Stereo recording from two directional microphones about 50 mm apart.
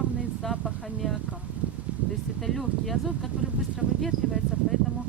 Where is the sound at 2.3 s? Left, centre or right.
Centre.